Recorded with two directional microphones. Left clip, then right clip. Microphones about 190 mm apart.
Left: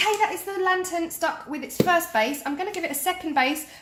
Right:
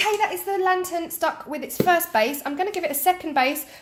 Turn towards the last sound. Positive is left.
turn(degrees=-40)  # may be behind; listen again after turning